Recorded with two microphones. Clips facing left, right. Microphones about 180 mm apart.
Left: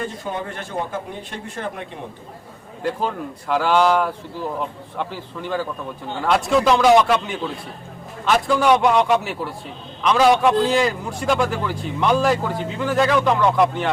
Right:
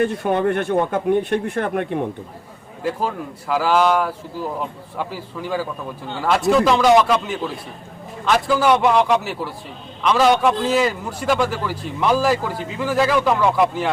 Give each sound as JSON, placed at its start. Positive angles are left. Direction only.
{"t": 0.0, "sound": "speech", "side_deg": -65}
{"t": 2.8, "sound": "a man's voice", "side_deg": -5}